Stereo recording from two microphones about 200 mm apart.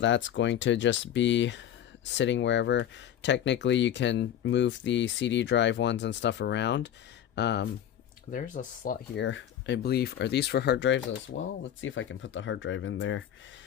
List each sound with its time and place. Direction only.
0.0 s speech: 65° left (ahead or behind)
8.3 s speech: 40° left (ahead or behind)
9.1 s speech: 65° left (ahead or behind)